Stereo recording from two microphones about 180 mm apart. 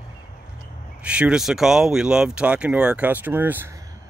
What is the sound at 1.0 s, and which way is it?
Speech, 5° right (ahead or behind).